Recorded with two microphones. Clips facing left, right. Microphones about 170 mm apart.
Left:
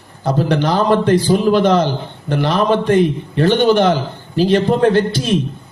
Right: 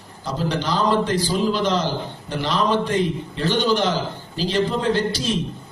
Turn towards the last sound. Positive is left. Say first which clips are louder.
# left 6 dB
turn(degrees=55)  # may be behind; listen again after turning